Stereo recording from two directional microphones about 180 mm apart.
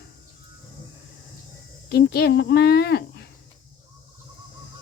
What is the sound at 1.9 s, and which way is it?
Speech, 65° left (ahead or behind).